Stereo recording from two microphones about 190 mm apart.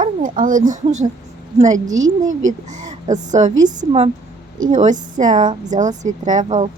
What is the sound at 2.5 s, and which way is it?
A woman's voice, 40° right (ahead or behind).